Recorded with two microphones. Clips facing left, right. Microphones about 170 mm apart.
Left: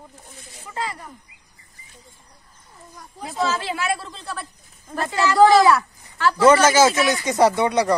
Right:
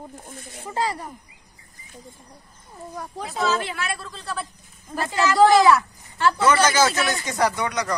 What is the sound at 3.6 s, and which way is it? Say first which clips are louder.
Speech: left 5 dB; 25° left (ahead or behind).